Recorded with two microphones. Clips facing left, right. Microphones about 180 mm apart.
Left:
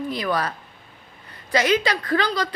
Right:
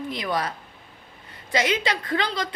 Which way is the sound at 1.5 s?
25° right (ahead or behind).